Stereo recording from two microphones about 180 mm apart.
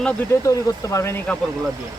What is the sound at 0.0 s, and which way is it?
Speech, 15° left (ahead or behind).